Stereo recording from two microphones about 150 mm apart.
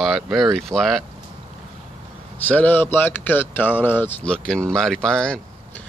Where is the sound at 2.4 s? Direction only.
10° left (ahead or behind).